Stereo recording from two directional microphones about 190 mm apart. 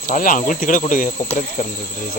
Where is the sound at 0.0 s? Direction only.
45° left (ahead or behind).